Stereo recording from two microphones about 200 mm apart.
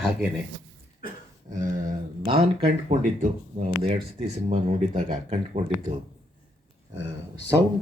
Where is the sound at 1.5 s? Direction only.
40° right (ahead or behind).